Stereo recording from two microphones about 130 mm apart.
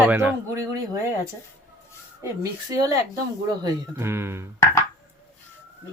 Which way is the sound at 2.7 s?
30° right (ahead or behind).